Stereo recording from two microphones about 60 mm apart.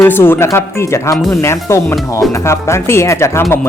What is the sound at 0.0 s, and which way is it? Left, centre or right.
A man's voice, left.